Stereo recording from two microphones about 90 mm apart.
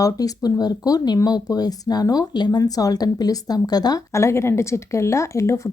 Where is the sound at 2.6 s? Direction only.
40° left (ahead or behind).